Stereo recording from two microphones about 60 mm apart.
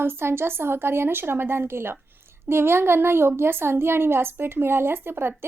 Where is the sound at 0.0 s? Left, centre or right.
Right.